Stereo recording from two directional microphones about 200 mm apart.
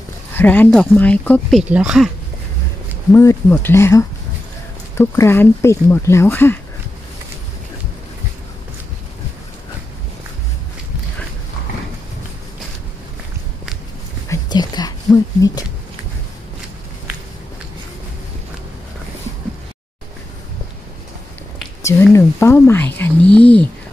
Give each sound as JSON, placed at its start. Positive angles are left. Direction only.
{"t": 0.3, "sound": "speech", "side_deg": 10}
{"t": 1.6, "sound": "speech", "side_deg": -5}
{"t": 3.1, "sound": "speech", "side_deg": 15}
{"t": 14.3, "sound": "whispering", "side_deg": 20}
{"t": 21.8, "sound": "a sound", "side_deg": 15}